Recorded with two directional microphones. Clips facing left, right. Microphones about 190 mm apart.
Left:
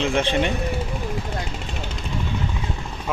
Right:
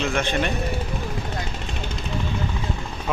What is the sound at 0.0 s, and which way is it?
Speech, 30° left (ahead or behind).